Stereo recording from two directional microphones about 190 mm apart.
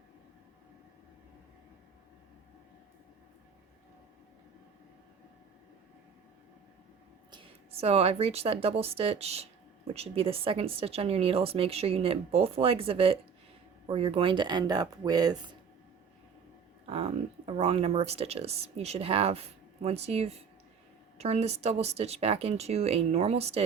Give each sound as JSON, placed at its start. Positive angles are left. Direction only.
{"t": 7.3, "sound": "a woman's voice", "side_deg": -30}
{"t": 16.8, "sound": "a woman's voice", "side_deg": -30}